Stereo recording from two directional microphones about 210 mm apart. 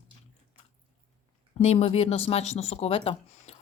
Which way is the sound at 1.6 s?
30° left (ahead or behind).